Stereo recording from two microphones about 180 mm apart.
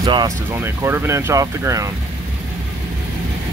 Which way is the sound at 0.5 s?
15° right (ahead or behind).